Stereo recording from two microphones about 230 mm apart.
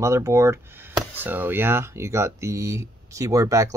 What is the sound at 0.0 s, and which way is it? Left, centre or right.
Speech, centre.